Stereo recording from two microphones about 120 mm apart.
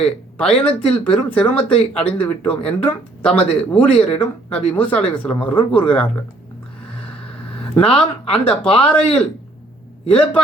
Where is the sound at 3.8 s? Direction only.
50° left (ahead or behind).